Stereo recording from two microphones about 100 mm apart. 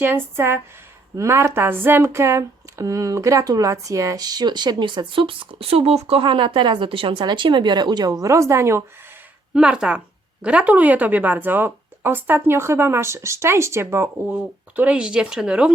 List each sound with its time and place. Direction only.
0.0 s a woman's voice: 25° right (ahead or behind); by 6.2 s 90° right
6.2 s speech: 55° right (ahead or behind); by 8.8 s 30° right (ahead or behind)
9.6 s a woman's voice: 10° right (ahead or behind); by 14.1 s 25° right (ahead or behind)
14.3 s speech: 10° right (ahead or behind)